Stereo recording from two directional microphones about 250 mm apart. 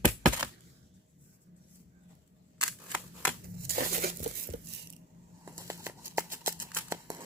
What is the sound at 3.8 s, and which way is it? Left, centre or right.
Tearing, right.